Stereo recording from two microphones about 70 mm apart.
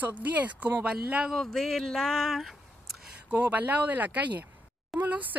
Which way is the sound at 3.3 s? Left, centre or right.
Right.